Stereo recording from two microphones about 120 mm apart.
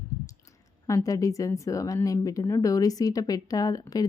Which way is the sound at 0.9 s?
30° left (ahead or behind).